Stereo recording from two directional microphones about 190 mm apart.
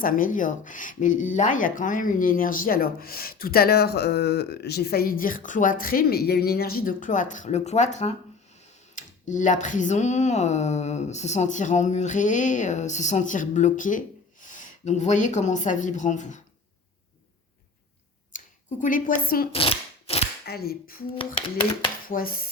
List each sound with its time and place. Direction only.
0.0 s speech: 45° left (ahead or behind)
18.3 s speech: 45° left (ahead or behind)
19.5 s shuffling cards: 30° left (ahead or behind)
20.4 s speech: 55° left (ahead or behind)
22.1 s speech: 50° left (ahead or behind)